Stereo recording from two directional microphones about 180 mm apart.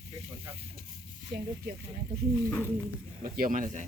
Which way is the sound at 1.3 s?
55° right (ahead or behind).